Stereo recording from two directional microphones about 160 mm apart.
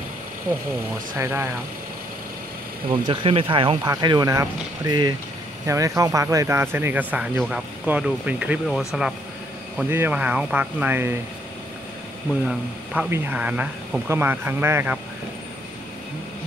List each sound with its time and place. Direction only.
1.1 s speech: 15° right (ahead or behind)
2.9 s speech: 35° right (ahead or behind); by 9.1 s centre (ahead or behind)
9.8 s speech: 15° right (ahead or behind)
12.4 s speech: 10° right (ahead or behind)